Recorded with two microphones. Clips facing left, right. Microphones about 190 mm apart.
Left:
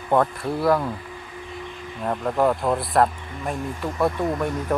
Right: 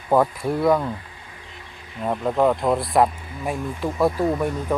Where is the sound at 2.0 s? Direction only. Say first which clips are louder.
Right 2 dB; 5° right (ahead or behind).